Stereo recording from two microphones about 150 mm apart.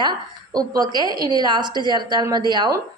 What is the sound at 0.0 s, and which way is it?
A woman's voice, 30° right (ahead or behind).